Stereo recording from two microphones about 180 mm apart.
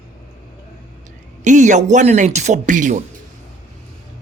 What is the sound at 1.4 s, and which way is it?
A man's voice, 45° right (ahead or behind).